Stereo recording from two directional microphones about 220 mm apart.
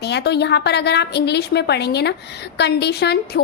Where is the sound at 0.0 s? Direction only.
50° left (ahead or behind).